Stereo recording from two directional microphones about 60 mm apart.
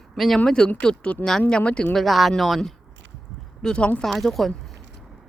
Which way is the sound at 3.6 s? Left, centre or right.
Centre.